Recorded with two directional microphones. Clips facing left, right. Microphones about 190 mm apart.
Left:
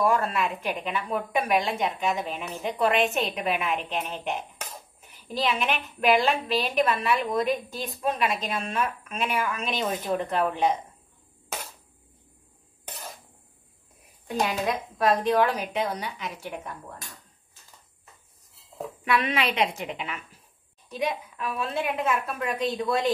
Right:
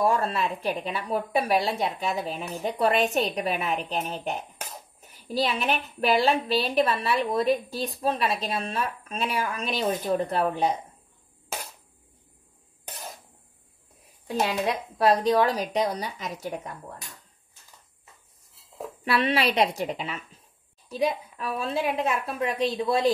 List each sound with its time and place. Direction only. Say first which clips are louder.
0.0 s a woman's voice: even; 35° right (ahead or behind)
14.4 s a woman's voice: even; 35° right (ahead or behind)
19.0 s a woman's voice: right 2 dB; 30° right (ahead or behind)